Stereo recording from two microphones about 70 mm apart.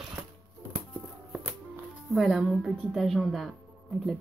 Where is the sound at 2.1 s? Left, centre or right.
Centre.